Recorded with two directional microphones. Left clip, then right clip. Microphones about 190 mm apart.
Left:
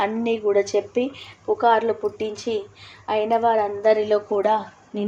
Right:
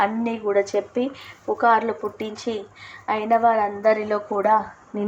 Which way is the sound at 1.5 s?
10° right (ahead or behind).